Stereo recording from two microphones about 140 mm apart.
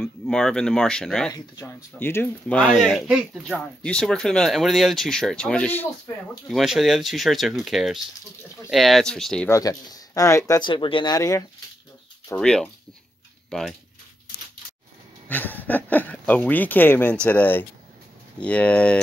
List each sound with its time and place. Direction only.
0.0 s speech: 5° left (ahead or behind)
1.3 s speech: 25° left (ahead or behind)
2.0 s speech: 15° left (ahead or behind)
6.5 s speech: centre (ahead or behind)
9.5 s speech: 25° left (ahead or behind)
11.1 s speech: 25° left (ahead or behind)
12.4 s speech: 5° left (ahead or behind)
15.2 s speech: 15° left (ahead or behind)